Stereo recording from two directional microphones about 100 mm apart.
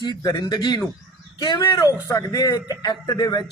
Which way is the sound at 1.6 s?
30° left (ahead or behind).